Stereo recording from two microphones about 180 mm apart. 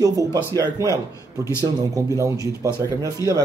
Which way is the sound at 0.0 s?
20° right (ahead or behind).